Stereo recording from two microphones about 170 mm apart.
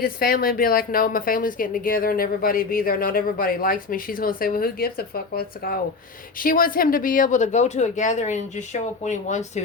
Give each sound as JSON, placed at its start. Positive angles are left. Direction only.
{"t": 0.0, "sound": "a woman's voice", "side_deg": 60}